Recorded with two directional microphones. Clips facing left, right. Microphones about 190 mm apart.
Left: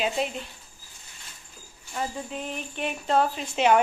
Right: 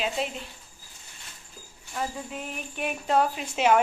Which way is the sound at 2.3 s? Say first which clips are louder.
Left 2 dB; 10° right (ahead or behind).